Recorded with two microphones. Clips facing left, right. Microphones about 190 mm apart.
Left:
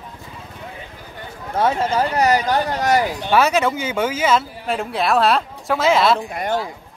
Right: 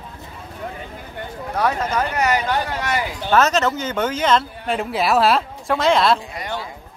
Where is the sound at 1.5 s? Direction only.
25° left (ahead or behind).